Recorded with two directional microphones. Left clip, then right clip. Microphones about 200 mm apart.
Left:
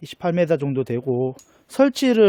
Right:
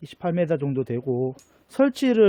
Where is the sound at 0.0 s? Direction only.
40° left (ahead or behind).